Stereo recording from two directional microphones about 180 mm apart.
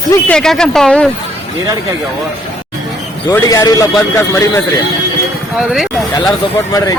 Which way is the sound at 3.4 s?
20° left (ahead or behind).